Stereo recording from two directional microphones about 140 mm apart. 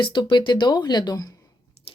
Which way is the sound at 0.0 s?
35° left (ahead or behind).